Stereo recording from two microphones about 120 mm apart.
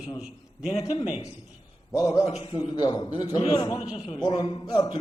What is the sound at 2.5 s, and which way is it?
A man's voice, 35° left (ahead or behind).